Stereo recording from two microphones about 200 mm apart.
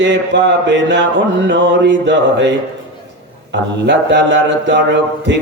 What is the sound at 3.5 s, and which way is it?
Music, 60° right (ahead or behind).